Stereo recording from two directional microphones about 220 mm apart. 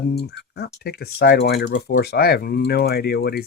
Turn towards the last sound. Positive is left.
turn(degrees=45)  # may be behind; listen again after turning